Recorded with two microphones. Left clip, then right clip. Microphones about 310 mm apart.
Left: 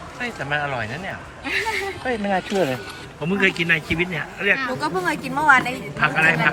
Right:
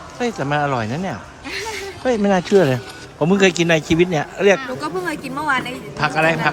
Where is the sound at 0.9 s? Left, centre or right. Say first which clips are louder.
Right 4 dB; right.